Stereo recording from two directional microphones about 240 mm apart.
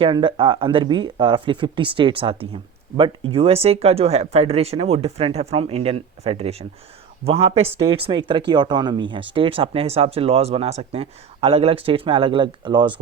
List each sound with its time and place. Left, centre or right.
0.0 s speech: right